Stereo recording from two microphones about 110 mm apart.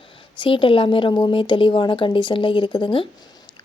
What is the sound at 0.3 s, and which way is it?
Speech, 50° left (ahead or behind).